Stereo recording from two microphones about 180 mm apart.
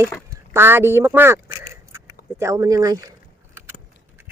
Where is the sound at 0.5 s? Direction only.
15° right (ahead or behind).